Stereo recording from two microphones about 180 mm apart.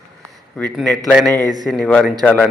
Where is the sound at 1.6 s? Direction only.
Centre (ahead or behind).